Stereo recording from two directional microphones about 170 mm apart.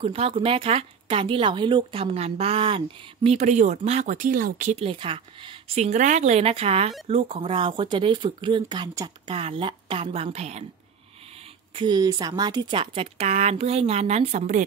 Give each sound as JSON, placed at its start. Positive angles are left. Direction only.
{"t": 0.0, "sound": "speech", "side_deg": -35}
{"t": 4.7, "sound": "speech", "side_deg": -30}
{"t": 9.3, "sound": "speech", "side_deg": -35}
{"t": 11.7, "sound": "speech", "side_deg": -25}